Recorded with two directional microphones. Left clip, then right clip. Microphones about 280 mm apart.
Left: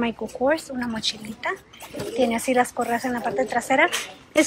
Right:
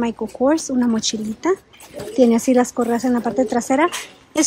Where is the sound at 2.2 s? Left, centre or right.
Centre.